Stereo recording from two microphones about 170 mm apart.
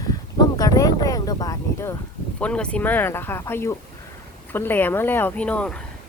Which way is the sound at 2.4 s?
5° left (ahead or behind).